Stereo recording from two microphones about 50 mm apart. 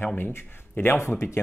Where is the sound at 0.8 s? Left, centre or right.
Left.